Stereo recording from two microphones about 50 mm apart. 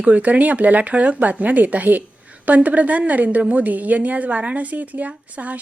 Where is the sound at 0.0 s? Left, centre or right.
Right.